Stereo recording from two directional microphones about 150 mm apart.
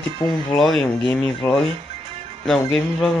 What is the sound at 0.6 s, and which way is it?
Speech, centre (ahead or behind).